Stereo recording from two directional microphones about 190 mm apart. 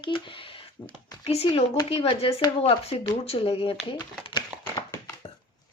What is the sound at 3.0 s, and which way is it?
Crumpling, 30° left (ahead or behind).